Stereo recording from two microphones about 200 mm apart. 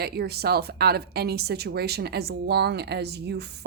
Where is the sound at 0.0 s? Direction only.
55° right (ahead or behind).